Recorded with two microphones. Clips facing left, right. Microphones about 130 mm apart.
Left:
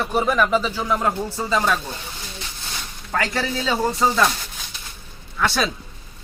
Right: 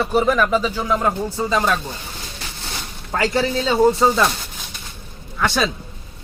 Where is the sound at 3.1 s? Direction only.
Centre (ahead or behind).